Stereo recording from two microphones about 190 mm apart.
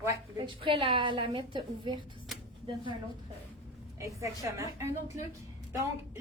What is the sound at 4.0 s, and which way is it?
A woman's voice, 15° right (ahead or behind).